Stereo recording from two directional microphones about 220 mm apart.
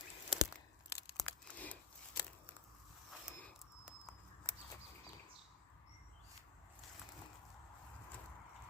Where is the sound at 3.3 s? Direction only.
5° right (ahead or behind).